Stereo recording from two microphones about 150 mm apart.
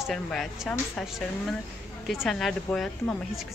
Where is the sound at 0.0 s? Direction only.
Centre (ahead or behind).